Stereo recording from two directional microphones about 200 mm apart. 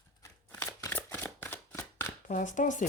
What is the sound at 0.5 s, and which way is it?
Shuffling cards, 15° left (ahead or behind).